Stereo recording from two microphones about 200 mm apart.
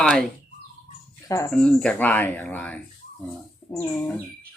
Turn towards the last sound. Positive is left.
turn(degrees=15)  # may be behind; listen again after turning